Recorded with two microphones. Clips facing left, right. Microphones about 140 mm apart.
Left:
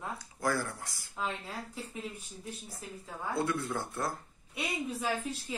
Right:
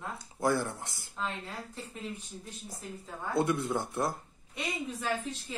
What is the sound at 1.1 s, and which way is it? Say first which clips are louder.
Speech: left 1 dB; 10° left (ahead or behind).